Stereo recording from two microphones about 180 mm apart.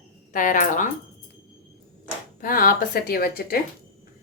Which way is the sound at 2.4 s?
50° left (ahead or behind).